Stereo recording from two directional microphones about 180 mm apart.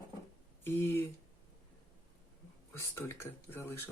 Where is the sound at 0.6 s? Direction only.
15° left (ahead or behind).